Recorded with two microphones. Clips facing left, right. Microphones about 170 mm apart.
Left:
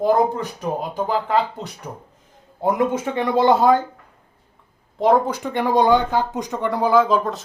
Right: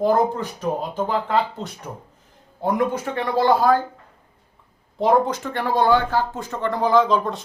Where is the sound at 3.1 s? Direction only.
20° left (ahead or behind).